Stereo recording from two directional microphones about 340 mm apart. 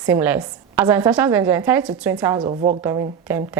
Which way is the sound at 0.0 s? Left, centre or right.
Centre.